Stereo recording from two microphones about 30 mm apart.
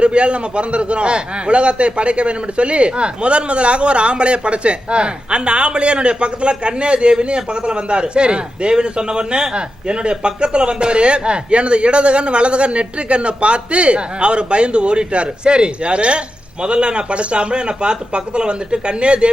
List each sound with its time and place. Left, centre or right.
0.0 s a man's voice: right